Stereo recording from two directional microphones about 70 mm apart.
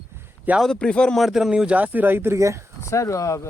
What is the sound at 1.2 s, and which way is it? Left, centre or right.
Speech, centre.